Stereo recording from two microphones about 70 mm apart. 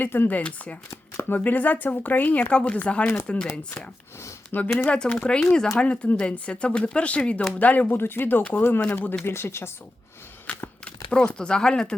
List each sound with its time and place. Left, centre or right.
0.0 s speech: left
4.5 s speech: left
4.9 s speech: centre; by 9.7 s left
10.4 s a sound: left
10.8 s speech: centre